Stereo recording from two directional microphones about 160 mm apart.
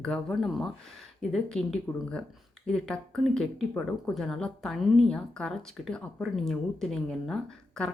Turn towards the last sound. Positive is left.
turn(degrees=5)  # may be behind; listen again after turning